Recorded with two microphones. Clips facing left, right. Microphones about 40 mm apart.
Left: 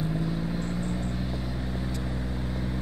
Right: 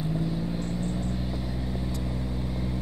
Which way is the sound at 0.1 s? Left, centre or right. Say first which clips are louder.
Even; left.